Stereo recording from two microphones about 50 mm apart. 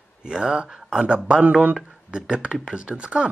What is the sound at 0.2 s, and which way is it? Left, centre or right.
Speech, centre.